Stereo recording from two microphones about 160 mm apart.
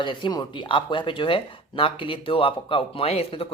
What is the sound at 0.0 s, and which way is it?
Speech, 30° left (ahead or behind).